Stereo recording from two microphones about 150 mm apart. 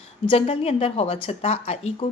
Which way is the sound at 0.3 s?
40° left (ahead or behind).